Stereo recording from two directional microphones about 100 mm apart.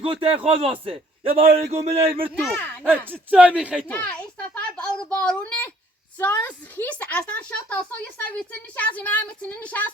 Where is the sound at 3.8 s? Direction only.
15° left (ahead or behind).